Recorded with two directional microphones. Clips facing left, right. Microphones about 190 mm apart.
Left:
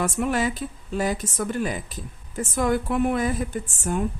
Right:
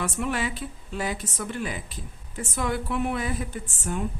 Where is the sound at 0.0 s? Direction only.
45° left (ahead or behind).